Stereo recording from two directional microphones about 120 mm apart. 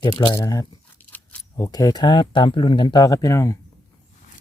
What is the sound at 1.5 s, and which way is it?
Speech, 35° left (ahead or behind).